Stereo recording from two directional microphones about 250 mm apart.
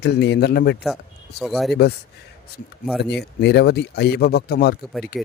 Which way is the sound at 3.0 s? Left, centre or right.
Left.